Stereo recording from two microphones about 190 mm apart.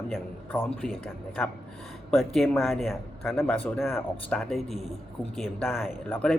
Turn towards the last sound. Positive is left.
turn(degrees=5)  # may be behind; listen again after turning